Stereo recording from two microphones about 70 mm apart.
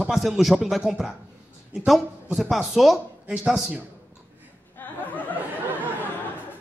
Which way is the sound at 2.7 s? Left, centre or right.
Centre.